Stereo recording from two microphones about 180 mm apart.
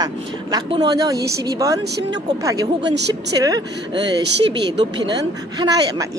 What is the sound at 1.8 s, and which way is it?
Speech, 65° right (ahead or behind).